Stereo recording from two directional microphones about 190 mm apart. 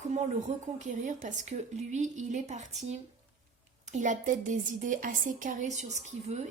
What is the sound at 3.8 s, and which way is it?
A woman's voice, 40° right (ahead or behind).